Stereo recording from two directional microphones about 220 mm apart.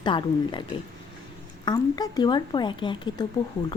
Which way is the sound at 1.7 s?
20° left (ahead or behind).